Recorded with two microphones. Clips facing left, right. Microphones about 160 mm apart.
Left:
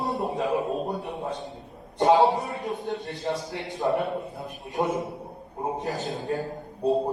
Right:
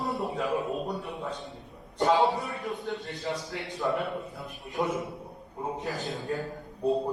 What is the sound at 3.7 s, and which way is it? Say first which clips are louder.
A man's voice: left 4 dB; 35° left (ahead or behind).